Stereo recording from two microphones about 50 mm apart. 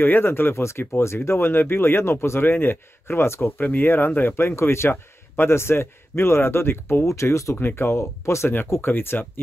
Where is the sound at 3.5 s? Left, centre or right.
Left.